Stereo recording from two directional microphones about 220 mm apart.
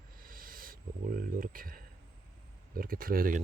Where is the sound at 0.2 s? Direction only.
40° right (ahead or behind).